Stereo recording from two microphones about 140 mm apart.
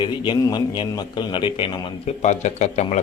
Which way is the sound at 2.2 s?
55° left (ahead or behind).